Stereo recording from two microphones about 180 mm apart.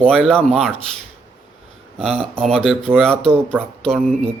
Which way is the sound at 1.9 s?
Centre (ahead or behind).